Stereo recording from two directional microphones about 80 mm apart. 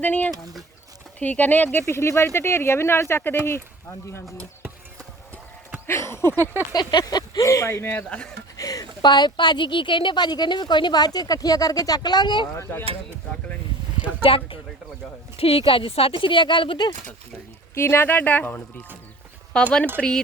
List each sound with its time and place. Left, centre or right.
0.0 s speech: centre
1.9 s speech: left
5.8 s speech: left
6.4 s a sound: right
6.7 s a sound: left
7.4 s speech: left
7.9 s speech: centre
8.5 s a woman's voice: left
12.7 s speech: left
15.8 s speech: left
17.7 s speech: left
19.5 s speech: centre